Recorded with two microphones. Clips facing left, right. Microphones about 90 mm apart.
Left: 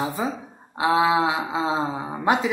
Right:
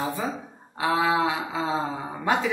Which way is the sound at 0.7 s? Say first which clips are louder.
Left 3 dB; 15° left (ahead or behind).